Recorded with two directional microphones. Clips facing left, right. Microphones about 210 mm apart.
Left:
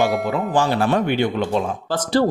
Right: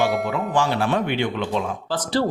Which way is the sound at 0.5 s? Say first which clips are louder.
Left 3 dB; 40° left (ahead or behind).